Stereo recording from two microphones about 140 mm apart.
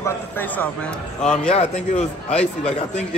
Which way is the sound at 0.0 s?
15° left (ahead or behind).